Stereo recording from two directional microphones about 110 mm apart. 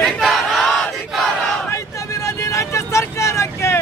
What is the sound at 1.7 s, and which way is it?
Vehicle, 25° left (ahead or behind).